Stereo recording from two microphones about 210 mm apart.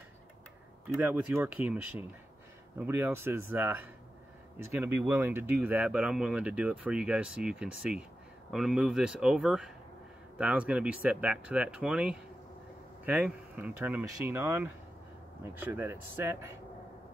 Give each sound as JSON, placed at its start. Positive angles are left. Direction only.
{"t": 0.9, "sound": "speech", "side_deg": -10}
{"t": 2.8, "sound": "speech", "side_deg": -10}